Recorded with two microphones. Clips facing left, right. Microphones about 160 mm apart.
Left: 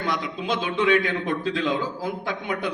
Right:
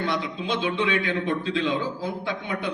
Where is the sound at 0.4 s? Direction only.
40° left (ahead or behind).